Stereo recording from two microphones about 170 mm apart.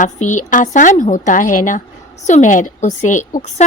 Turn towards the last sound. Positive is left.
turn(degrees=45)  # may be behind; listen again after turning